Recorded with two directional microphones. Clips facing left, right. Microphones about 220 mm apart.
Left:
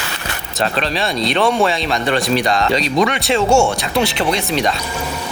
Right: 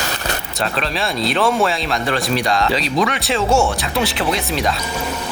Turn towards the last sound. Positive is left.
turn(degrees=0)  # may be behind; listen again after turning